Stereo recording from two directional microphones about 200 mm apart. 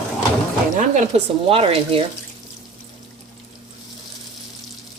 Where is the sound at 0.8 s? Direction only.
35° right (ahead or behind).